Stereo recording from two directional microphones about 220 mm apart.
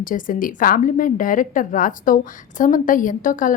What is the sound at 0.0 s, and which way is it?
A woman's voice, 40° left (ahead or behind).